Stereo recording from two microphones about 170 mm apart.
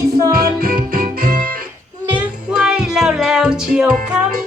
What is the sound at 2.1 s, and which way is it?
Music, 5° right (ahead or behind).